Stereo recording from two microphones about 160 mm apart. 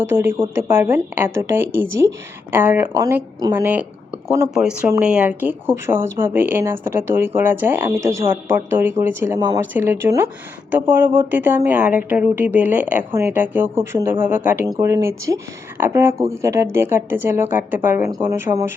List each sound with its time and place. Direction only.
0.1 s speech: 15° right (ahead or behind)